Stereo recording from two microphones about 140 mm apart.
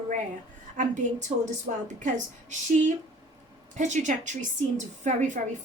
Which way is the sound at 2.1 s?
60° right (ahead or behind).